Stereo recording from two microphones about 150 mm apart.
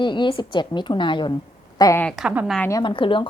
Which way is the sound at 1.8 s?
20° left (ahead or behind).